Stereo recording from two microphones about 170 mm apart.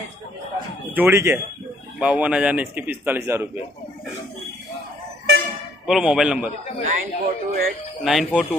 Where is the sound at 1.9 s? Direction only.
5° right (ahead or behind).